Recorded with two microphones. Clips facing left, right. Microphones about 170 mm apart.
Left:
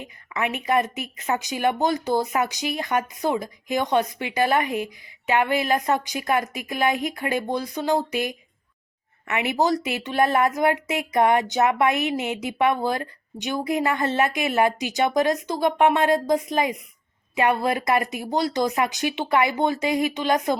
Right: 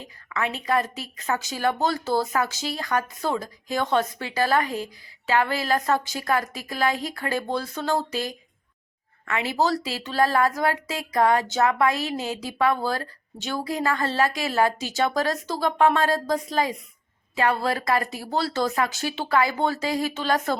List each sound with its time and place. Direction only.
0.0 s a woman's voice: 15° left (ahead or behind)